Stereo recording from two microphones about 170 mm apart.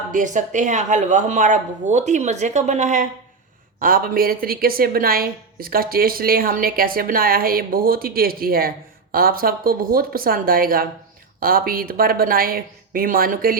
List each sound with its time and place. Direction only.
0.1 s speech: 50° right (ahead or behind)
3.8 s a woman's voice: 55° right (ahead or behind)